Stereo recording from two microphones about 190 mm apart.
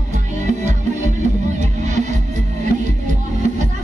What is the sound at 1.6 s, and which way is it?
Music, 40° right (ahead or behind).